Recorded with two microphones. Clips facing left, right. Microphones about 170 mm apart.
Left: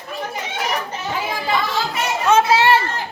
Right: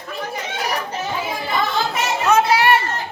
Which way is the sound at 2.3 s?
25° left (ahead or behind).